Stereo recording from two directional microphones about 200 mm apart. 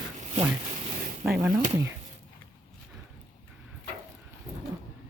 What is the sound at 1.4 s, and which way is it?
Speech, 15° right (ahead or behind).